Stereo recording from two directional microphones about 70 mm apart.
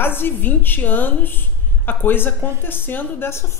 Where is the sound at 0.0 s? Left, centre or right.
Left.